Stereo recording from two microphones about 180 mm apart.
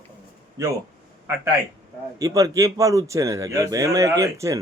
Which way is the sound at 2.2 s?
20° right (ahead or behind).